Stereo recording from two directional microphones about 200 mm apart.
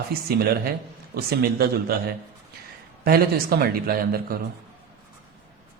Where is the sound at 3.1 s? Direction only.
50° right (ahead or behind).